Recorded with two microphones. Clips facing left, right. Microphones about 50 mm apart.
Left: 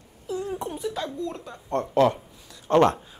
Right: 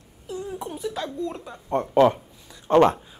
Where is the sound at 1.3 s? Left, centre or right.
Centre.